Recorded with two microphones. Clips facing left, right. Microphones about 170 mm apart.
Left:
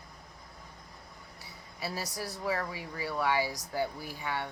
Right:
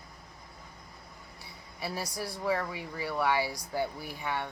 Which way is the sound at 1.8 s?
15° right (ahead or behind).